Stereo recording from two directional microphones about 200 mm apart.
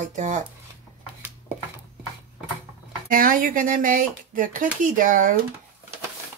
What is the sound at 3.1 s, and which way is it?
Speech, 45° right (ahead or behind).